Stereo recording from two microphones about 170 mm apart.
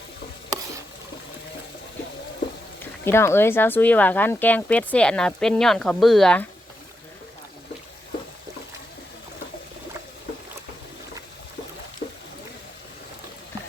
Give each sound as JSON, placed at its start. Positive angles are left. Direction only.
{"t": 2.8, "sound": "speech", "side_deg": 15}
{"t": 12.0, "sound": "boat", "side_deg": 60}